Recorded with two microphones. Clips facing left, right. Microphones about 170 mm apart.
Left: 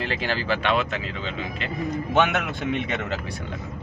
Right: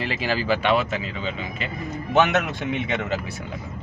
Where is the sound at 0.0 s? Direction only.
5° right (ahead or behind).